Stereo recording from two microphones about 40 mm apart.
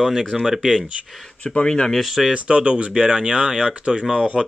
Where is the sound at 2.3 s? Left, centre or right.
Right.